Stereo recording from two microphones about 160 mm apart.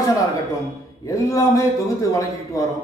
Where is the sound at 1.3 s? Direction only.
20° left (ahead or behind).